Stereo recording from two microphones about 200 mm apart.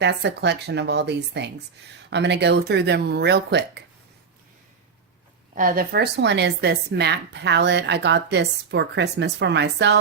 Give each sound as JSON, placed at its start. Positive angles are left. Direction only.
{"t": 0.0, "sound": "speech", "side_deg": -60}
{"t": 5.5, "sound": "speech", "side_deg": -45}